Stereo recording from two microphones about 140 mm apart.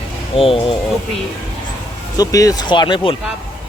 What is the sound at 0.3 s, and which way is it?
Speech, 40° left (ahead or behind).